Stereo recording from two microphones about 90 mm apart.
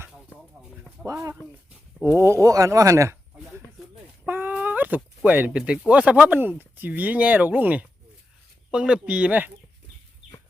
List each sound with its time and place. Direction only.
1.0 s speech: 35° right (ahead or behind)
4.3 s chicken: 20° right (ahead or behind)
5.5 s speech: 10° right (ahead or behind)